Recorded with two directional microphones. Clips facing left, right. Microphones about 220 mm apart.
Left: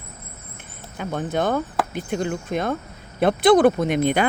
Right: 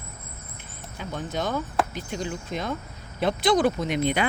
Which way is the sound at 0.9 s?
55° left (ahead or behind).